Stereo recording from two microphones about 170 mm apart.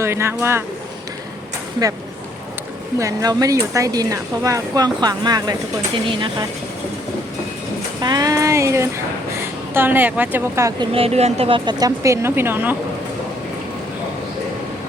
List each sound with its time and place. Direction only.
0.0 s speech: 15° right (ahead or behind)
3.0 s speech: 20° right (ahead or behind)
8.0 s a sound: 20° right (ahead or behind)
9.4 s a woman's voice: 10° right (ahead or behind)
10.9 s speech: 35° right (ahead or behind); by 12.7 s 10° right (ahead or behind)